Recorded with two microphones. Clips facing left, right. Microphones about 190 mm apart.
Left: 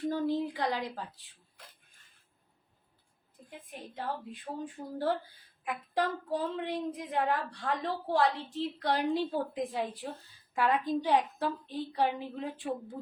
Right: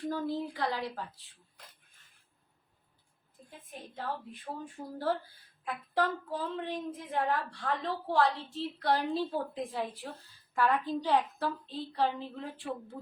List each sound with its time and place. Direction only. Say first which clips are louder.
0.1 s a woman's voice: left 3 dB; 15° left (ahead or behind)
4.4 s a woman's voice: left 2 dB; 15° left (ahead or behind)